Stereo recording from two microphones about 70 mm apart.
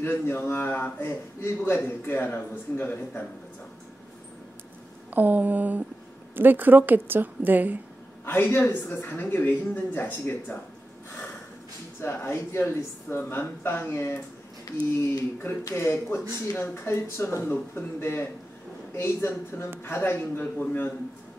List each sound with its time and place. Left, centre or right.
0.0 s a man's voice: left
5.1 s a woman's voice: right
8.3 s a man's voice: left
12.0 s speech: left